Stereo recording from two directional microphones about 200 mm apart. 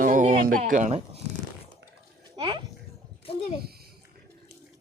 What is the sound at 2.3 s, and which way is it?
Speech, 25° right (ahead or behind).